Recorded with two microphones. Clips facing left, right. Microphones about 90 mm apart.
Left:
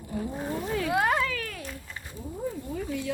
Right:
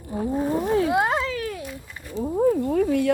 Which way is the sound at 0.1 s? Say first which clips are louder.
Right 8 dB; 25° right (ahead or behind).